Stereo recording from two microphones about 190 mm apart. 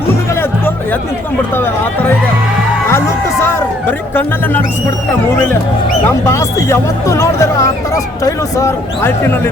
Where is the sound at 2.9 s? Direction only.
15° left (ahead or behind).